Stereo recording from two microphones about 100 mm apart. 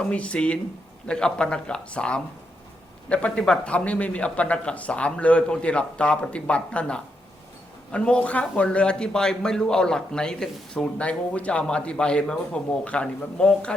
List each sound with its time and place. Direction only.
0.0 s a man's voice: 10° left (ahead or behind)